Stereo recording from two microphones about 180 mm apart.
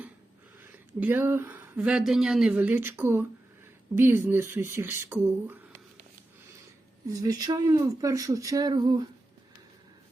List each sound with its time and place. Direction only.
0.6 s speech: 10° right (ahead or behind)
7.1 s speech: 20° right (ahead or behind)